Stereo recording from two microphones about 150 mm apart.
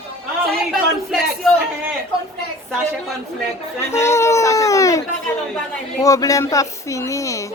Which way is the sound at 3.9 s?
20° left (ahead or behind).